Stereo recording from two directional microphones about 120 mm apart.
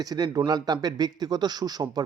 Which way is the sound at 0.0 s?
30° right (ahead or behind).